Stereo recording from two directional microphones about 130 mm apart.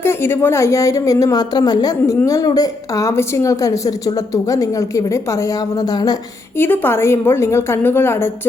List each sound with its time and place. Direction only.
0.0 s a woman's voice: 20° left (ahead or behind)
6.6 s a woman's voice: 15° left (ahead or behind)